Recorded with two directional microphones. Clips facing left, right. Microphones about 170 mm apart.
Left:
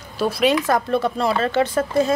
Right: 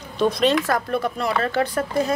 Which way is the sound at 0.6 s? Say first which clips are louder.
Left 3 dB; 25° left (ahead or behind).